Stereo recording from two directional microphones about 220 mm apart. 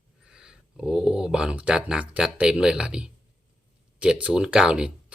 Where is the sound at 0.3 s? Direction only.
5° right (ahead or behind).